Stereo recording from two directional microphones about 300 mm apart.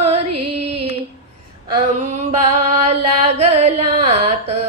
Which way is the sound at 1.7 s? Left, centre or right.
Right.